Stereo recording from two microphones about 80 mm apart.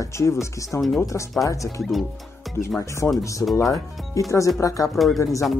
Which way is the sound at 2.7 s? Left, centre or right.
Left.